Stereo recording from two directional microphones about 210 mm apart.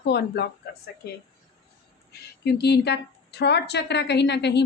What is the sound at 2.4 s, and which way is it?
A woman's voice, 50° left (ahead or behind).